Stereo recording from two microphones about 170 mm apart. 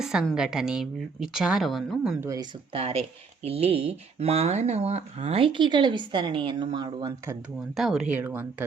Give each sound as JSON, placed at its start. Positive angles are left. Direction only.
{"t": 0.0, "sound": "a woman's voice", "side_deg": -5}
{"t": 2.2, "sound": "speech", "side_deg": -20}
{"t": 2.7, "sound": "speech", "side_deg": -35}
{"t": 7.8, "sound": "speech", "side_deg": 0}